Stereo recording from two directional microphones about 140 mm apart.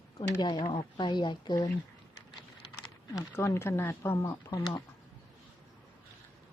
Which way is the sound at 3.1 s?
20° left (ahead or behind).